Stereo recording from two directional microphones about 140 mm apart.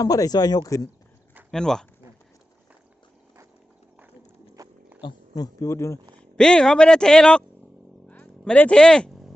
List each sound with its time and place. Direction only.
0.0 s speech: 25° left (ahead or behind)
1.5 s speech: 5° left (ahead or behind)
4.6 s a sound: 25° right (ahead or behind)
4.9 s speech: 30° left (ahead or behind)
6.1 s speech: 5° left (ahead or behind)
8.0 s a sound: 10° left (ahead or behind)